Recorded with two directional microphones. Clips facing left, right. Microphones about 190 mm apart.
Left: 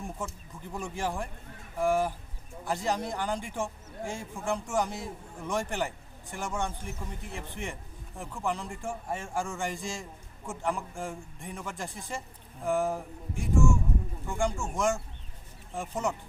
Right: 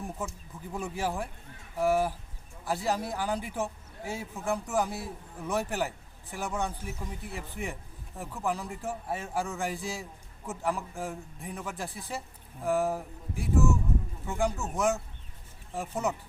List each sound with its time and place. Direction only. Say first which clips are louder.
0.2 s a man's voice: right 1 dB; 5° right (ahead or behind)